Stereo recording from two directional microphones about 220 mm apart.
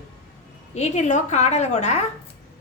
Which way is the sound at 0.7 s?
30° left (ahead or behind).